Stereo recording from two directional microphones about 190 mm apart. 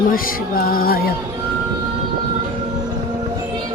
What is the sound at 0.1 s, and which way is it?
Music, 50° left (ahead or behind).